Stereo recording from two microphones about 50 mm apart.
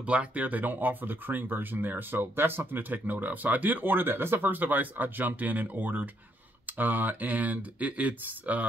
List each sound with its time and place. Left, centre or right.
0.0 s speech: right
4.5 s speech: right